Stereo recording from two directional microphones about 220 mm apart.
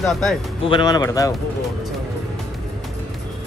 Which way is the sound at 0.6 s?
20° left (ahead or behind).